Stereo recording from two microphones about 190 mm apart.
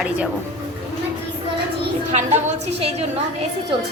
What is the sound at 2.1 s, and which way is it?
A woman's voice, 35° right (ahead or behind).